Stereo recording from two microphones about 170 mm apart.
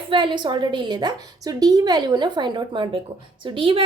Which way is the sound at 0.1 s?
30° right (ahead or behind).